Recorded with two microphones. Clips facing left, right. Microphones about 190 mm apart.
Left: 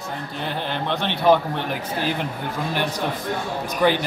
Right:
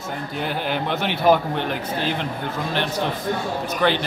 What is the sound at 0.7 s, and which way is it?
Speech, 5° right (ahead or behind).